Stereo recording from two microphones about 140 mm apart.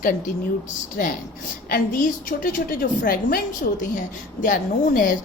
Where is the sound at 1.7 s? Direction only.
85° left.